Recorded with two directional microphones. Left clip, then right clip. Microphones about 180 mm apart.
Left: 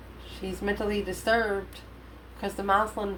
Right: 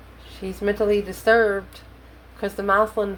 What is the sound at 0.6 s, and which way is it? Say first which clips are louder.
A woman's voice: right 9 dB; 40° right (ahead or behind).